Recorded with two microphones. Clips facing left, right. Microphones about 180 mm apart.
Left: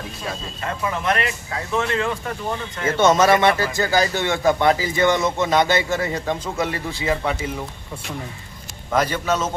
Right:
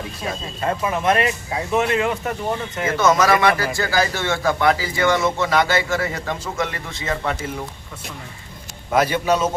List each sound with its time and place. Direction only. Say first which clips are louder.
0.6 s speech: right 4 dB; 20° right (ahead or behind)
2.8 s speech: left 2 dB; 25° left (ahead or behind)
8.9 s a man's voice: right 3 dB; 10° right (ahead or behind)